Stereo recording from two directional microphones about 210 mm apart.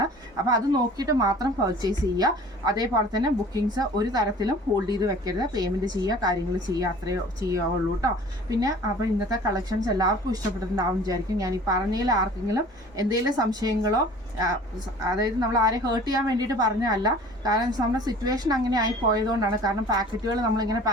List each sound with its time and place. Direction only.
0.0 s a woman's voice: 20° right (ahead or behind)